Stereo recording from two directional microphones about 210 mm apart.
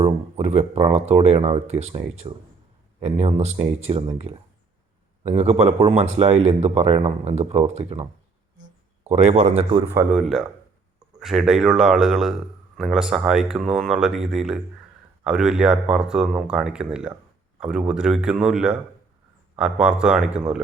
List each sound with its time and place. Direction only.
0.0 s speech: 30° right (ahead or behind)
5.2 s speech: 30° right (ahead or behind)
9.0 s a man's voice: 30° right (ahead or behind)
9.9 s a man's voice: 5° right (ahead or behind)